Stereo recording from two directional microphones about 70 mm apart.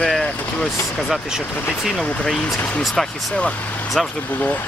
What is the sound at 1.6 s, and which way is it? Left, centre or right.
Speech, left.